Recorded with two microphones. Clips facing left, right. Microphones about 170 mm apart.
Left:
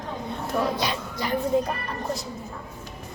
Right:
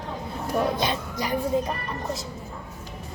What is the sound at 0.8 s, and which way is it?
Speech, 15° right (ahead or behind).